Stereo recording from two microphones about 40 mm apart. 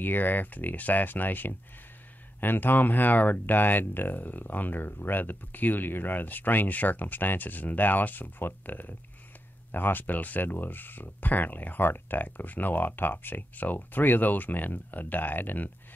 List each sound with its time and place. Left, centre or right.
0.0 s speech: left